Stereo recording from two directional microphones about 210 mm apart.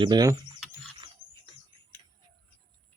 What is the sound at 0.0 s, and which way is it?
Speech, 20° right (ahead or behind).